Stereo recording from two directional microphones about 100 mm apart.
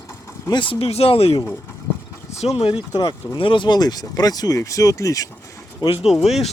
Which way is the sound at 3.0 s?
50° left (ahead or behind).